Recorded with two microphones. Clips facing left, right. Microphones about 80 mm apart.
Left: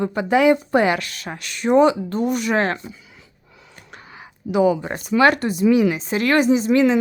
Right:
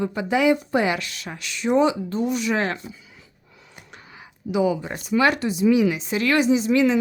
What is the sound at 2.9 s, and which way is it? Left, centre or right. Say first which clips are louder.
Dog: left 2 dB; left.